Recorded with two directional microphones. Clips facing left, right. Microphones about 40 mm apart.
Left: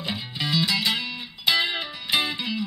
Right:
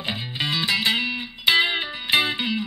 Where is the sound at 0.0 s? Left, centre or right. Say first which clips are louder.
Right 2 dB; right.